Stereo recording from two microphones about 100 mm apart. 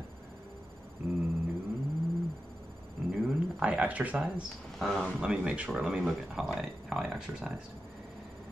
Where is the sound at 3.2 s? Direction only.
10° right (ahead or behind).